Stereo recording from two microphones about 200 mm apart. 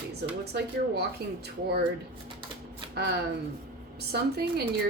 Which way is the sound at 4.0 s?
55° right (ahead or behind).